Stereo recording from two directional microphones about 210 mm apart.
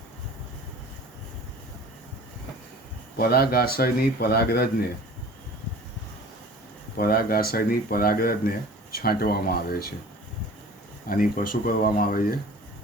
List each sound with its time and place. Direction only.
3.2 s speech: 45° left (ahead or behind)
7.0 s speech: 45° left (ahead or behind)
11.1 s speech: 40° left (ahead or behind)